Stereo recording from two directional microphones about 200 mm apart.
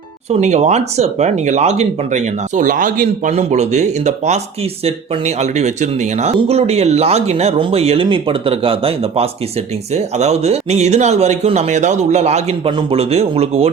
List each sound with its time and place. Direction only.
0.3 s speech: 35° right (ahead or behind)